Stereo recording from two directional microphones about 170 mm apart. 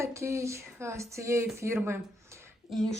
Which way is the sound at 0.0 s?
15° right (ahead or behind).